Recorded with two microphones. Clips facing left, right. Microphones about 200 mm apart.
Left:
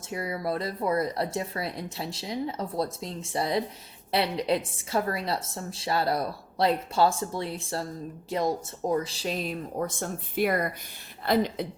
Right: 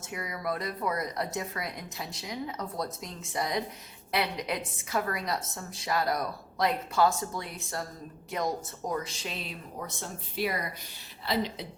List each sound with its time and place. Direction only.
0.0 s a woman's voice: 30° left (ahead or behind); by 11.6 s 50° left (ahead or behind)